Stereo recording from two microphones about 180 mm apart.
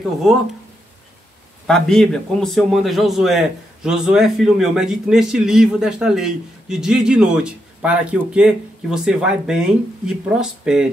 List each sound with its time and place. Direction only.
1.7 s a man's voice: 5° left (ahead or behind)